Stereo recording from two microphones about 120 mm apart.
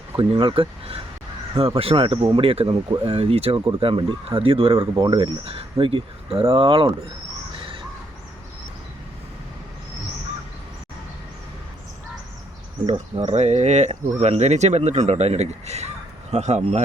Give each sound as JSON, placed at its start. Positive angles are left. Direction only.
{"t": 0.2, "sound": "speech", "side_deg": -40}
{"t": 12.8, "sound": "speech", "side_deg": -40}
{"t": 13.2, "sound": "speech", "side_deg": -70}